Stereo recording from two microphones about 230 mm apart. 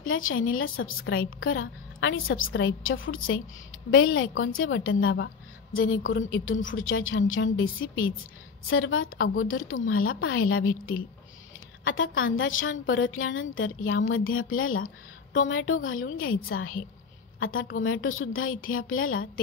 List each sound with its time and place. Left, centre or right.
0.0 s a woman's voice: left
11.8 s a woman's voice: left